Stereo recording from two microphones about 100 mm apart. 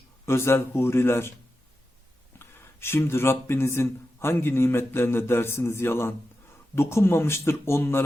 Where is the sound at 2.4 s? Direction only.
25° left (ahead or behind).